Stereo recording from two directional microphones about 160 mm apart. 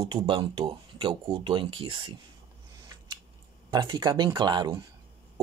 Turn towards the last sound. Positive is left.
turn(degrees=-25)  # may be behind; listen again after turning